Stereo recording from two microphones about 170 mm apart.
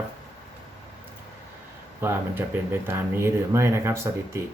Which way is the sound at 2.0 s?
10° right (ahead or behind).